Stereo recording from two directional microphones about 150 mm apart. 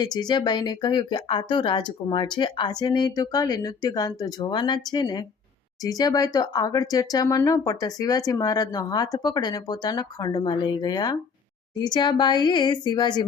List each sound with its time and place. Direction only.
0.0 s speech: 30° left (ahead or behind)